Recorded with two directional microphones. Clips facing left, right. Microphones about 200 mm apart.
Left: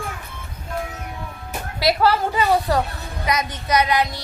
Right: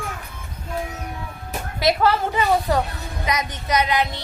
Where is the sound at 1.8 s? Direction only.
20° right (ahead or behind).